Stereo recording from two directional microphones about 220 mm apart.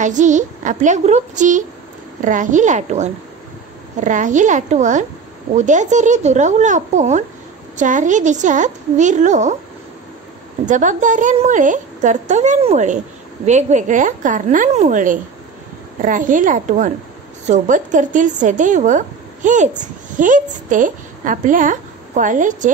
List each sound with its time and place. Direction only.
0.0 s a woman's voice: 35° right (ahead or behind)
10.6 s a woman's voice: 35° right (ahead or behind)